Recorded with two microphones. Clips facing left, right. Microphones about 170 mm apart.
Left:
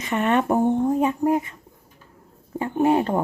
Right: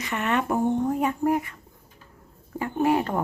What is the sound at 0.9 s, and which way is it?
Speech, 20° left (ahead or behind).